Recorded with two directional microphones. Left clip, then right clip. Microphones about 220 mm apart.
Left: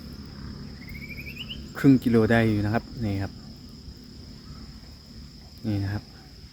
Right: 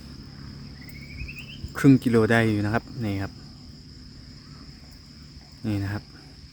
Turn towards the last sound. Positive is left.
turn(degrees=-25)  # may be behind; listen again after turning